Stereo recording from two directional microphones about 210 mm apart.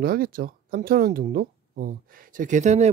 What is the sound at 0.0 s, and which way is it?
Speech, 45° right (ahead or behind).